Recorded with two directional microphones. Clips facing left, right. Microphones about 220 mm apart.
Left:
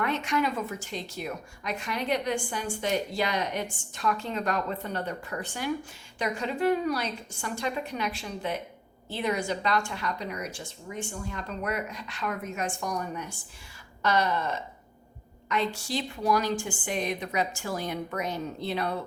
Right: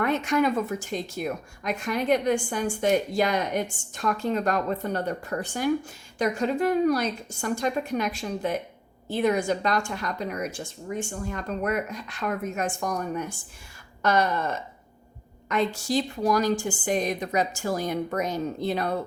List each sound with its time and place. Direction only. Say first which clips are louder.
0.0 s speech: right 5 dB; 45° right (ahead or behind)